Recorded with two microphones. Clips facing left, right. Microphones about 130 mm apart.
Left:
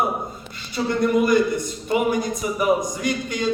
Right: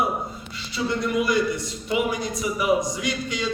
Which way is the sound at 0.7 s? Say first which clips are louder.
Left 4 dB; 50° left (ahead or behind).